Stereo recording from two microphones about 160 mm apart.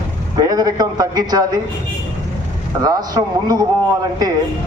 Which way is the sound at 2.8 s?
25° right (ahead or behind).